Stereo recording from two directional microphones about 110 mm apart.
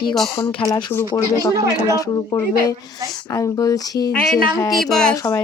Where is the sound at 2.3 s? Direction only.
30° left (ahead or behind).